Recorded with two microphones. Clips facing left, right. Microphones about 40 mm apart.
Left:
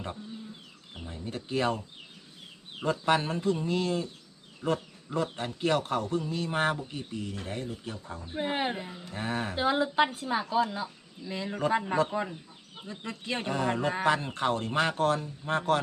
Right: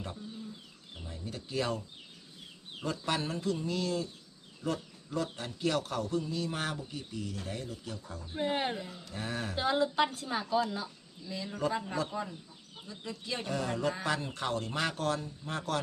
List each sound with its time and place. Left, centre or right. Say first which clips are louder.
0.9 s speech: left 4 dB; left
2.8 s a woman's voice: left 7 dB; left
8.3 s a woman's voice: left 2 dB; centre
9.6 s a woman's voice: left 3 dB; centre
11.3 s speech: left 5 dB; left